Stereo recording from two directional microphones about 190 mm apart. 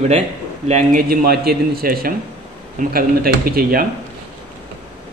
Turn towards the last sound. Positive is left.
turn(degrees=-50)  # may be behind; listen again after turning